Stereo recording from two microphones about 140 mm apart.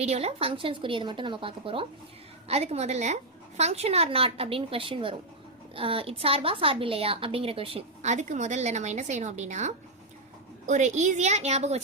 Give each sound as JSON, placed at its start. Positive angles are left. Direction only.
{"t": 0.0, "sound": "a woman's voice", "side_deg": -50}